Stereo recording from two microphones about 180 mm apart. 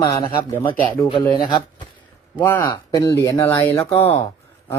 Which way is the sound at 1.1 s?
25° left (ahead or behind).